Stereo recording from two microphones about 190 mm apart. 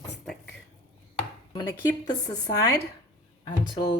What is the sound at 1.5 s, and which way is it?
A woman's voice, 20° left (ahead or behind).